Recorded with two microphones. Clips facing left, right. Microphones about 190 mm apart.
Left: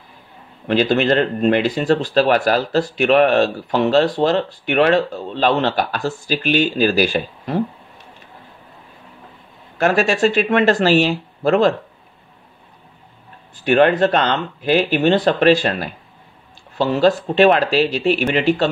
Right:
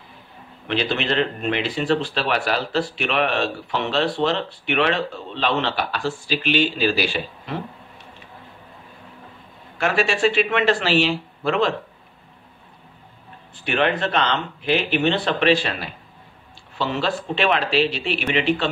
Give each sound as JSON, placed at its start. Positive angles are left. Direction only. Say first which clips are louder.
{"t": 0.7, "sound": "speech", "louder": "left 7 dB", "side_deg": 40}
{"t": 9.8, "sound": "speech", "louder": "left 5 dB", "side_deg": 40}
{"t": 13.7, "sound": "speech", "louder": "left 8 dB", "side_deg": 40}